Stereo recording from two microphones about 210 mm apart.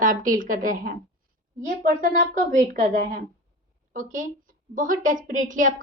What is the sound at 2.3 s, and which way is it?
A woman's voice, 35° right (ahead or behind).